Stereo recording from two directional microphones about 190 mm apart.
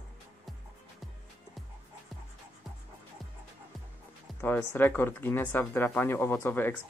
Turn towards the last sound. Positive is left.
turn(degrees=10)  # may be behind; listen again after turning